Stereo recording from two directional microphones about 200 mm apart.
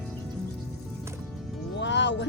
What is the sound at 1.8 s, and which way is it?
Speech, 60° left (ahead or behind).